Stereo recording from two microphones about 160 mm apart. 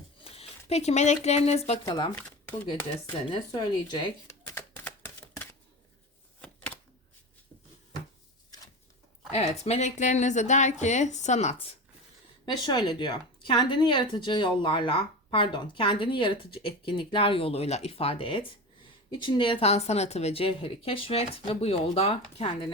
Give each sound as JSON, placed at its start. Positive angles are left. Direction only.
{"t": 0.3, "sound": "speech", "side_deg": 40}
{"t": 1.8, "sound": "speech", "side_deg": 30}
{"t": 2.1, "sound": "speech", "side_deg": 10}
{"t": 3.2, "sound": "speech", "side_deg": 30}
{"t": 4.3, "sound": "typewriter", "side_deg": 10}
{"t": 6.4, "sound": "a sound", "side_deg": 10}
{"t": 8.4, "sound": "a sound", "side_deg": 20}
{"t": 9.3, "sound": "speech", "side_deg": 45}
{"t": 12.5, "sound": "speech", "side_deg": 25}